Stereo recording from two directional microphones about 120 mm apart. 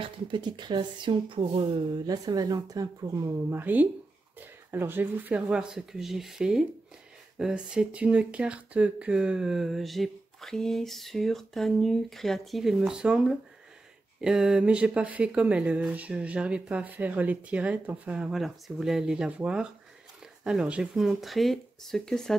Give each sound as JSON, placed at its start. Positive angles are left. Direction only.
{"t": 0.0, "sound": "speech", "side_deg": -40}